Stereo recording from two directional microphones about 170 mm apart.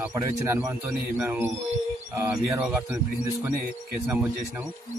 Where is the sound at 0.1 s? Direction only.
15° right (ahead or behind).